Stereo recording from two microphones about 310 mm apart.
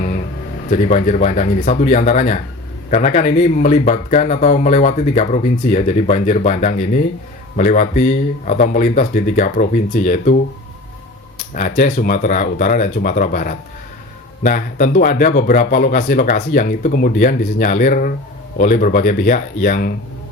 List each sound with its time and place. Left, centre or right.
0.7 s speech: left
11.5 s speech: left